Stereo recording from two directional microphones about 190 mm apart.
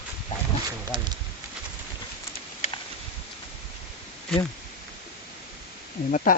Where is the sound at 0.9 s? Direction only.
25° right (ahead or behind).